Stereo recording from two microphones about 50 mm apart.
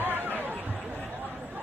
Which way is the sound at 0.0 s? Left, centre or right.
Right.